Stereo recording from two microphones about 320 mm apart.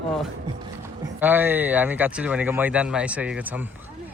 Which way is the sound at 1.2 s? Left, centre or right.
Centre.